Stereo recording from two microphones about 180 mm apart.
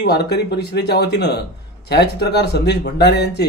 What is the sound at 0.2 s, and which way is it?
A man's voice, 65° left (ahead or behind).